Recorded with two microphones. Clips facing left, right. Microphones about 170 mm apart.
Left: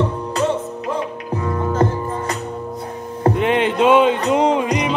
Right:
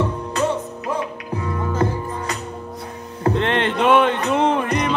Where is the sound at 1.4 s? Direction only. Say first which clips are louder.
Left 3 dB; 45° left (ahead or behind).